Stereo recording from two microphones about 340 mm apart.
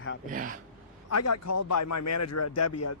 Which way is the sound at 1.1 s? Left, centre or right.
Left.